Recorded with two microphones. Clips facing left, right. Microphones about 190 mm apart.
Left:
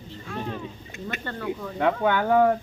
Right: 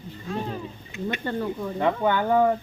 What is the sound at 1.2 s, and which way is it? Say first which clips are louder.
Speech: right 9 dB; 15° right (ahead or behind).